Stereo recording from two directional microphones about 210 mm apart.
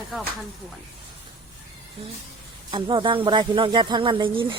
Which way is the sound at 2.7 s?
25° right (ahead or behind).